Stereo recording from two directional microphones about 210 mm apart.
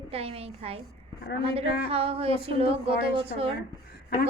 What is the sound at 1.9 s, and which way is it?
A woman's voice, 25° right (ahead or behind).